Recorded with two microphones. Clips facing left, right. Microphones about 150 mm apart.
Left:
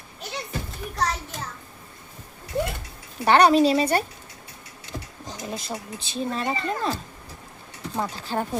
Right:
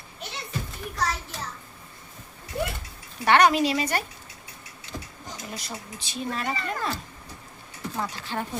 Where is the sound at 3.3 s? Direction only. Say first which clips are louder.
Left 3 dB; 35° left (ahead or behind).